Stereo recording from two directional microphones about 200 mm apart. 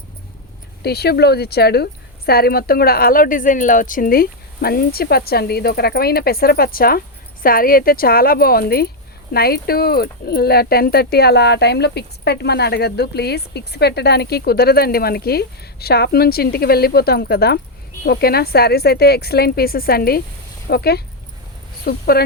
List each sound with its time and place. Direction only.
0.8 s speech: 55° left (ahead or behind)